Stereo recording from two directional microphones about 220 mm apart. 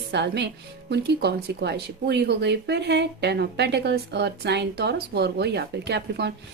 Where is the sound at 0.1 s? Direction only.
50° right (ahead or behind).